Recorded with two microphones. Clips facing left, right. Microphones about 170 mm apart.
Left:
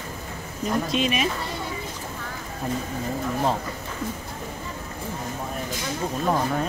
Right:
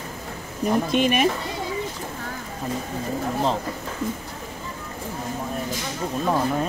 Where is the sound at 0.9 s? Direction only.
55° right (ahead or behind).